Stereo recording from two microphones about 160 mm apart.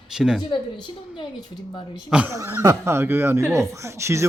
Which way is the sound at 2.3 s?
20° right (ahead or behind).